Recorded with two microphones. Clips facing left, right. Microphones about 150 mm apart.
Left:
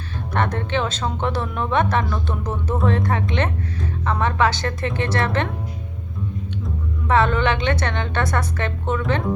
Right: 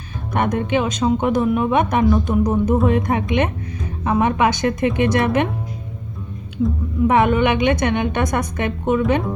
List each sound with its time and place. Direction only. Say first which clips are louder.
0.3 s speech: right 4 dB; 15° right (ahead or behind)
7.1 s speech: right 2 dB; 15° right (ahead or behind)